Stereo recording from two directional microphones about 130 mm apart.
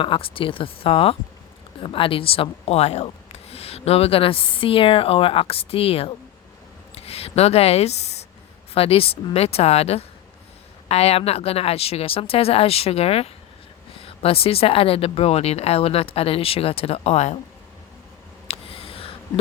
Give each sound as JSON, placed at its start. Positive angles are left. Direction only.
{"t": 0.0, "sound": "speech", "side_deg": 40}
{"t": 18.4, "sound": "writing", "side_deg": 50}